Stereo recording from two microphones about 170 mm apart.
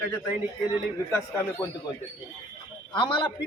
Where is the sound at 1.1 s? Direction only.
15° left (ahead or behind).